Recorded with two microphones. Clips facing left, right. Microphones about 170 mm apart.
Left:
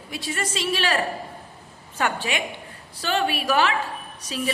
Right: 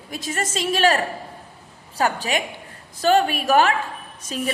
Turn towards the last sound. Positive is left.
turn(degrees=-50)  # may be behind; listen again after turning